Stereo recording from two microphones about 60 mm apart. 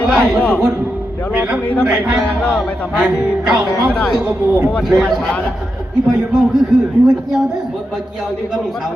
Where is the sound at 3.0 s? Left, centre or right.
Centre.